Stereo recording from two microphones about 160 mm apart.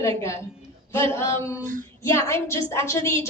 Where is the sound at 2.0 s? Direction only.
15° left (ahead or behind).